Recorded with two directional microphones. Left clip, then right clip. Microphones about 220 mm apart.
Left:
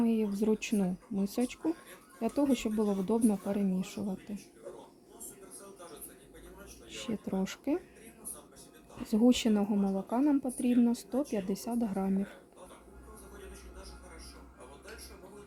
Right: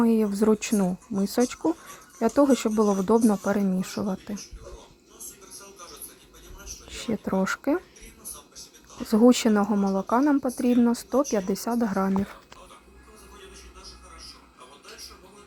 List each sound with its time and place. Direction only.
0.0 s speech: 20° right (ahead or behind)
6.9 s speech: 15° right (ahead or behind)
9.0 s speech: 15° right (ahead or behind)